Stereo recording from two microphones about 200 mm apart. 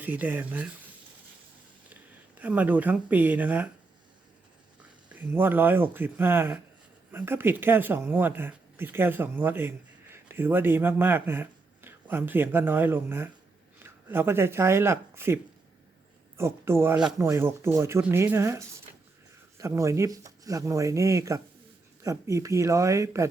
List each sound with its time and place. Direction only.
0.0 s speech: 10° right (ahead or behind)
2.4 s speech: 10° right (ahead or behind)
5.3 s speech: 10° right (ahead or behind)
16.4 s speech: 10° right (ahead or behind)